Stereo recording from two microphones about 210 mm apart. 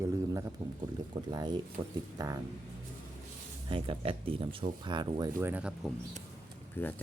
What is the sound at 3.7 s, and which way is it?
Speech, 25° right (ahead or behind).